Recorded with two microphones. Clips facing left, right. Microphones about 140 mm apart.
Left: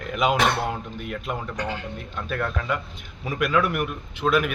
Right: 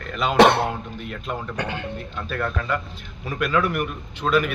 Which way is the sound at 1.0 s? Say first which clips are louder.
Left 2 dB; 10° left (ahead or behind).